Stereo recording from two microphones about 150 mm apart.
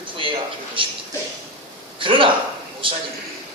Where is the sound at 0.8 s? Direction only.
35° right (ahead or behind).